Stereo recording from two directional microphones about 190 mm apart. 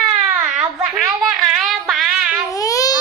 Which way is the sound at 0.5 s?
Centre (ahead or behind).